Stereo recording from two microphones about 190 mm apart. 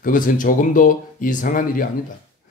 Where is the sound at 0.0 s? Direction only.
45° left (ahead or behind).